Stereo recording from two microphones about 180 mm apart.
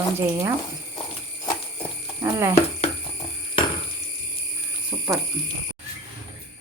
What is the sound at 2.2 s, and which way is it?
Speech, 15° right (ahead or behind).